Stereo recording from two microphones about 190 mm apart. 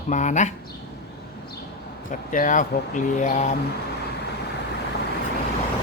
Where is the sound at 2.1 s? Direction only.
45° left (ahead or behind).